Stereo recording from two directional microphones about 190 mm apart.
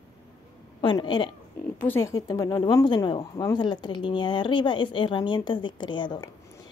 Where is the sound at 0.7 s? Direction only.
25° left (ahead or behind).